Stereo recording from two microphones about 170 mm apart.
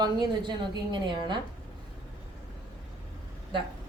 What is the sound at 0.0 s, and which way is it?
A woman's voice, 25° right (ahead or behind).